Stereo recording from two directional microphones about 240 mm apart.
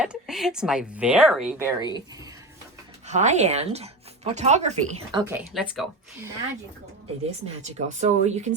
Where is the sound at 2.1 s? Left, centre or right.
Centre.